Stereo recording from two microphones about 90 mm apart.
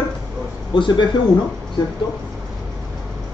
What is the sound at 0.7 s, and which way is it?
Speech, 60° left (ahead or behind).